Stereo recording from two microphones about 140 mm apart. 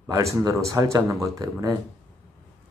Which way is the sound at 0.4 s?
25° right (ahead or behind).